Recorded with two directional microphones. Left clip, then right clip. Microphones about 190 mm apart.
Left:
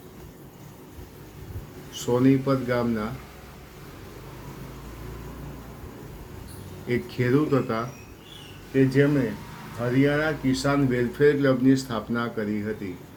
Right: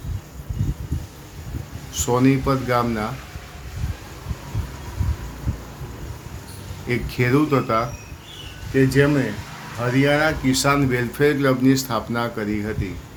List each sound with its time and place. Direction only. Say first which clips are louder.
1.9 s speech: right 3 dB; 35° right (ahead or behind)
6.8 s speech: right 3 dB; 35° right (ahead or behind)
8.7 s speech: right 4 dB; 45° right (ahead or behind)